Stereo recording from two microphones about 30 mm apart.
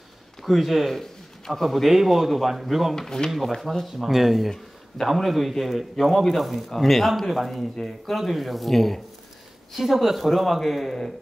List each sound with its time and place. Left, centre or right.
0.4 s a man's voice: centre
3.0 s speech: left
3.3 s a man's voice: centre
9.8 s a man's voice: centre